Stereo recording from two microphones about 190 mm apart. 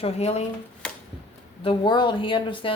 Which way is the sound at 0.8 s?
5° left (ahead or behind).